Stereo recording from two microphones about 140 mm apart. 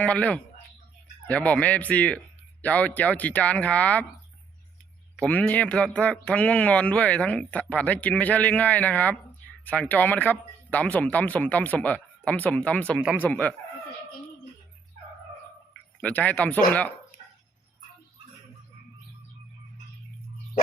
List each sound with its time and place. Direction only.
0.0 s speech: 10° left (ahead or behind)
5.2 s speech: 10° left (ahead or behind)
16.0 s speech: 10° left (ahead or behind)